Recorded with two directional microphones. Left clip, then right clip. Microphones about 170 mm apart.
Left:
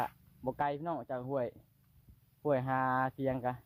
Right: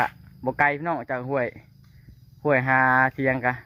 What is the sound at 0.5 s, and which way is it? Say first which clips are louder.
Speech: right 13 dB; 25° right (ahead or behind).